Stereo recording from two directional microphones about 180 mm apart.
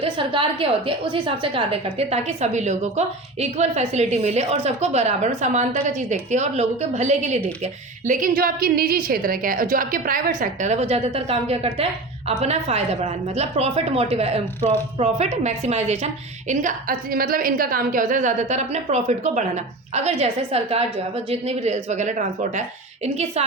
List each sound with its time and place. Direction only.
0.0 s a woman's voice: 30° right (ahead or behind)